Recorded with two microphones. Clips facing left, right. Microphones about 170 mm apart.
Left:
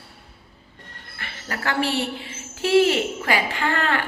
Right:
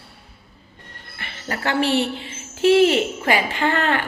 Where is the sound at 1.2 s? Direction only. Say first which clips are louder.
Right 3 dB; 25° right (ahead or behind).